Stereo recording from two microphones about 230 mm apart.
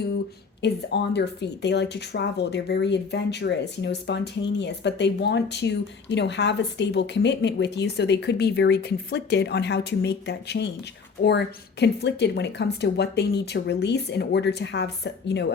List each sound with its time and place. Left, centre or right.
0.6 s speech: left